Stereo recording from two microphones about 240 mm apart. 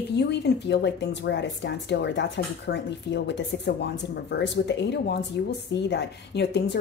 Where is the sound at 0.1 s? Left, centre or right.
Left.